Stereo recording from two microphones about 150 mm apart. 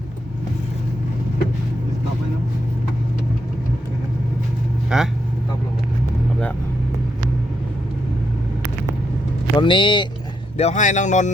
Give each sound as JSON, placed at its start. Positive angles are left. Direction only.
{"t": 4.9, "sound": "speech", "side_deg": -5}
{"t": 9.6, "sound": "speech", "side_deg": 35}
{"t": 10.6, "sound": "speech", "side_deg": 50}